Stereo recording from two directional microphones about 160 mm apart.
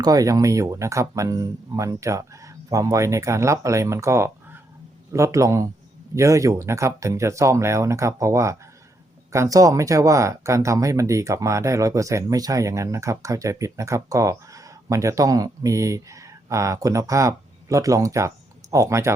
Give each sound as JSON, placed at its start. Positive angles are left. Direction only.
{"t": 0.0, "sound": "speech", "side_deg": -20}